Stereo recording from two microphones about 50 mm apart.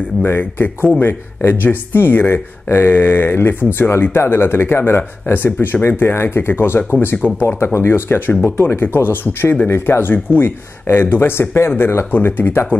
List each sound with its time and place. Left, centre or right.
0.2 s speech: left
5.3 s speech: left
7.4 s speech: left